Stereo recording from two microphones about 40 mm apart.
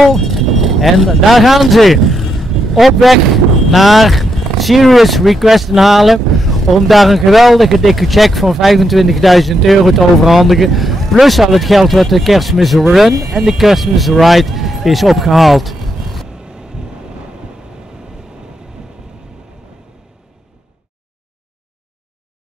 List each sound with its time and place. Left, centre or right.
0.0 s speech: centre
16.3 s vehicle: centre